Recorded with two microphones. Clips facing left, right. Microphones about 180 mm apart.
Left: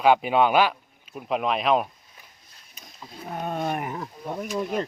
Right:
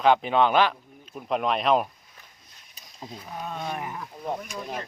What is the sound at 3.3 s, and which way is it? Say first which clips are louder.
Wild animals: left 5 dB; 55° left (ahead or behind).